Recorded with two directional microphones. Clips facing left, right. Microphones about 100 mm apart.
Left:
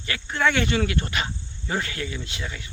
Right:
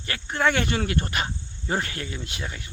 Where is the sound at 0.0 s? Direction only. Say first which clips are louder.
Even; 45° right (ahead or behind).